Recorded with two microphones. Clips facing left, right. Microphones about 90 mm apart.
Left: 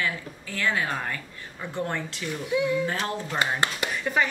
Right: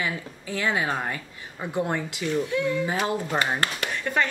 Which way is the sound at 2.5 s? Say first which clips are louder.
Left 1 dB; 10° left (ahead or behind).